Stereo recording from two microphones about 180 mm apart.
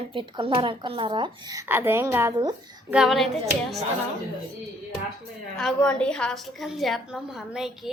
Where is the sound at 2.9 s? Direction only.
Centre (ahead or behind).